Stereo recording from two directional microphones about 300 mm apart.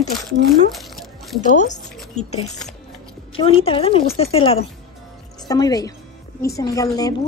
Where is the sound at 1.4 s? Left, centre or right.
Left.